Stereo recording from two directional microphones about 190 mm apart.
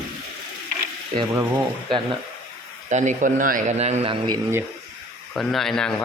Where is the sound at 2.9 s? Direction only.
40° right (ahead or behind).